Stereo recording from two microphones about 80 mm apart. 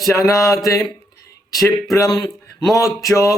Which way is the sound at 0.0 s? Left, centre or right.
Left.